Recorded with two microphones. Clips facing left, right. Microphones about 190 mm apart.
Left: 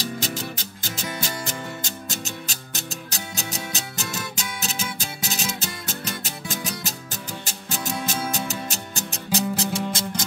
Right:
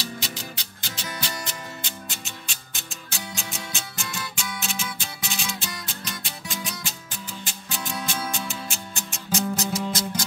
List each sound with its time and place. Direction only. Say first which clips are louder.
0.2 s music: left 6 dB; 45° left (ahead or behind); by 10.2 s 25° left (ahead or behind)